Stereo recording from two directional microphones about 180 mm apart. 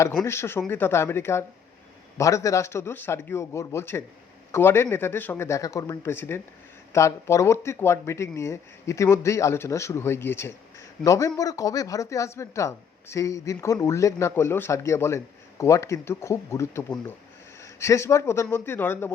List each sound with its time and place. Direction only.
0.2 s speech: 15° left (ahead or behind)